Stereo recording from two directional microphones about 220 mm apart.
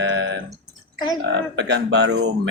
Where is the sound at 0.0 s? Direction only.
50° right (ahead or behind).